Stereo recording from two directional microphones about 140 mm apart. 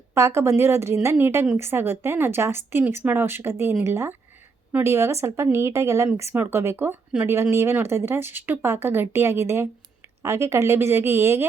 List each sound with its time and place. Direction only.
0.1 s speech: 20° right (ahead or behind)
7.1 s speech: 5° right (ahead or behind)
7.5 s speech: 20° right (ahead or behind)